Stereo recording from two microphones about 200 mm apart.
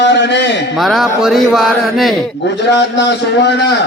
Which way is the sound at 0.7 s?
Centre (ahead or behind).